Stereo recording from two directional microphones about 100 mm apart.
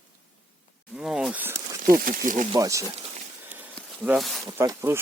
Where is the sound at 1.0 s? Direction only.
10° right (ahead or behind).